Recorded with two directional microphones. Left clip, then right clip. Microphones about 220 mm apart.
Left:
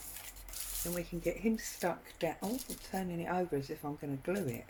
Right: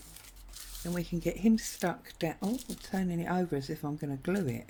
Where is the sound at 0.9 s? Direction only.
50° right (ahead or behind).